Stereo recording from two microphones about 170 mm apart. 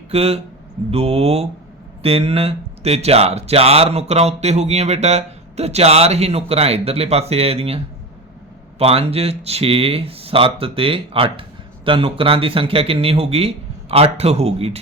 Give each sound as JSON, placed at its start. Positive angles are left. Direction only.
{"t": 0.1, "sound": "speech", "side_deg": -35}
{"t": 8.8, "sound": "speech", "side_deg": -35}